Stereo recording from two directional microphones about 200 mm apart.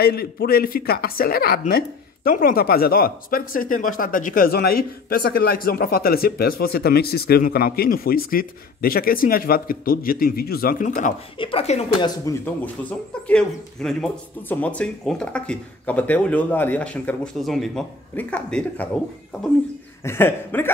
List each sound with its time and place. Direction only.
0.0 s speech: 50° left (ahead or behind)
11.3 s speech: 25° left (ahead or behind)
12.3 s speech: 15° left (ahead or behind)
13.3 s speech: 5° left (ahead or behind)
20.0 s speech: 10° left (ahead or behind)